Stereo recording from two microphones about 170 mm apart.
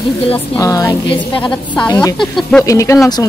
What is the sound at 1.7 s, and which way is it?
Speech, 5° left (ahead or behind).